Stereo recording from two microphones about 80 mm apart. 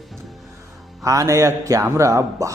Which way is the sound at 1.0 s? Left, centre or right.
Right.